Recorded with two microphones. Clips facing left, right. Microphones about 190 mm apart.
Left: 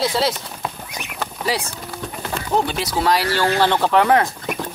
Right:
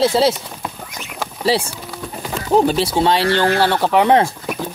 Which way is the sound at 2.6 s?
35° right (ahead or behind).